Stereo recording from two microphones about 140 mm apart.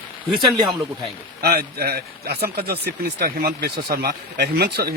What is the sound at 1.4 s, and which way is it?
Speech, 90° right.